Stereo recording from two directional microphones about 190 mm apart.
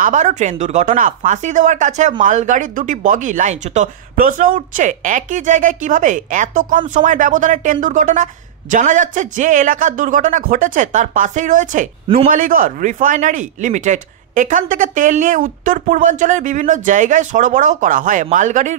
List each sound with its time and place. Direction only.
0.0 s a woman's voice: 40° right (ahead or behind)